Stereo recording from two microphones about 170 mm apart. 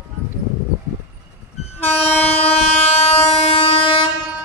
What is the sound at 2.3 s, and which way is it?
Train, 35° left (ahead or behind).